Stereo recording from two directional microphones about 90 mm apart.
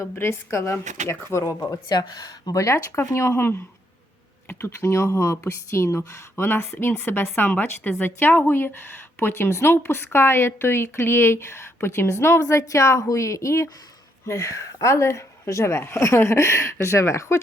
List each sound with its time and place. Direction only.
0.0 s speech: 30° left (ahead or behind)